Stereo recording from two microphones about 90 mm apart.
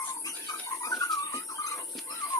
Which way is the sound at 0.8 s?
40° left (ahead or behind).